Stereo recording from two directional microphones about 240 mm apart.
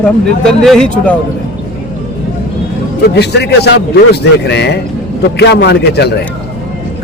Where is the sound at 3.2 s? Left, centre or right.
Left.